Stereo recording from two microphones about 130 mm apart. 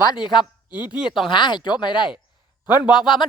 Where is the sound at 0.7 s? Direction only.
10° right (ahead or behind).